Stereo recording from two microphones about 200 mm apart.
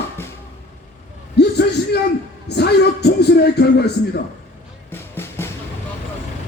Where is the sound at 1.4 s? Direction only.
55° left (ahead or behind).